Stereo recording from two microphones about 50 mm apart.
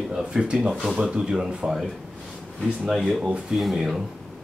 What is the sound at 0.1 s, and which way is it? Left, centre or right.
Speech, centre.